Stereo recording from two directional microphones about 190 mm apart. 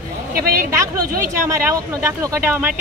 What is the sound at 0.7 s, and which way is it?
Speech, 15° right (ahead or behind).